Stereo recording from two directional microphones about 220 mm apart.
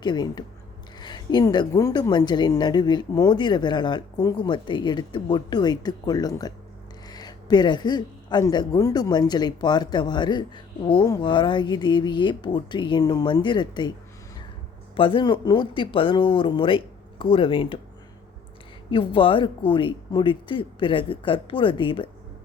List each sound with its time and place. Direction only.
0.0 s speech: 20° left (ahead or behind)
14.9 s speech: 25° left (ahead or behind)
18.9 s speech: 20° left (ahead or behind)